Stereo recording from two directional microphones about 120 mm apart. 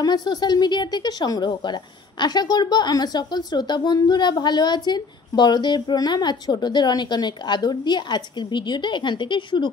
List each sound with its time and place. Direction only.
0.0 s a woman's voice: 35° left (ahead or behind)